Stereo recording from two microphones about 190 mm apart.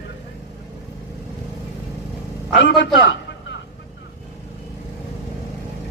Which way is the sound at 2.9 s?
75° left (ahead or behind).